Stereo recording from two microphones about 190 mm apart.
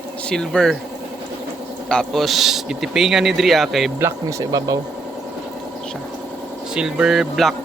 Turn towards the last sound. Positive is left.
turn(degrees=0)  # may be behind; listen again after turning